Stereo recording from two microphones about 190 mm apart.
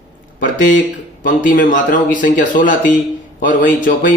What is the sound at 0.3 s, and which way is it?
Speech, 45° left (ahead or behind).